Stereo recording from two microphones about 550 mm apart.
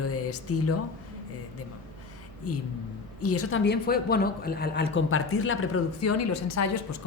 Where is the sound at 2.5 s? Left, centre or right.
Left.